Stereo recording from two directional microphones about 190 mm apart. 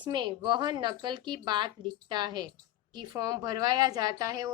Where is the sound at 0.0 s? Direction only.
25° right (ahead or behind).